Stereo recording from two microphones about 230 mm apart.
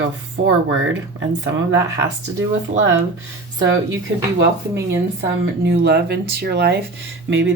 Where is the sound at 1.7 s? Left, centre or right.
Centre.